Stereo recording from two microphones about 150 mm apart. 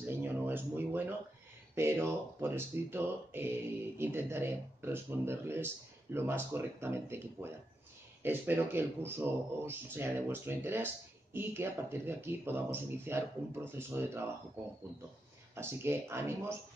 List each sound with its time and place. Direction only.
0.0 s a sound: 15° right (ahead or behind)
1.8 s speech: 15° right (ahead or behind)
15.5 s speech: 15° right (ahead or behind)